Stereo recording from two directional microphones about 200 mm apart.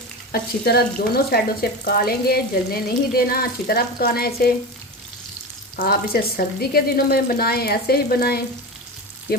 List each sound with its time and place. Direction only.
0.3 s frying: 50° left (ahead or behind)
5.7 s frying: 50° left (ahead or behind)